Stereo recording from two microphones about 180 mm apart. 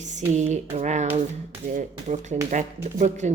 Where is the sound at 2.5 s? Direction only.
40° right (ahead or behind).